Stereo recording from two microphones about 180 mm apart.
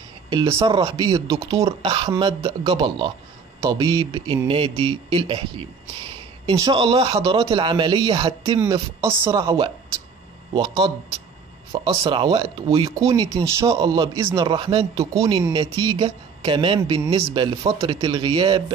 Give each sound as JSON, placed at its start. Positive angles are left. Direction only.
{"t": 0.3, "sound": "speech", "side_deg": -20}
{"t": 11.7, "sound": "speech", "side_deg": -25}